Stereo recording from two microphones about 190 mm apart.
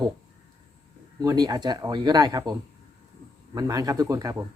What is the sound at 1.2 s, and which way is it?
Speech, 20° right (ahead or behind).